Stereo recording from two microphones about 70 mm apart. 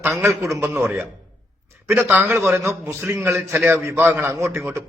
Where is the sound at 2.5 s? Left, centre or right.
Right.